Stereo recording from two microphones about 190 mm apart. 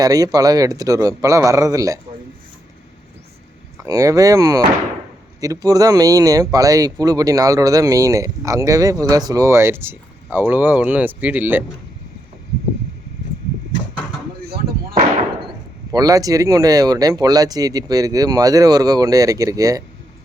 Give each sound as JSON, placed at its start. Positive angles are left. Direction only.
{"t": 0.0, "sound": "speech", "side_deg": -20}
{"t": 3.8, "sound": "speech", "side_deg": -15}
{"t": 15.9, "sound": "speech", "side_deg": -20}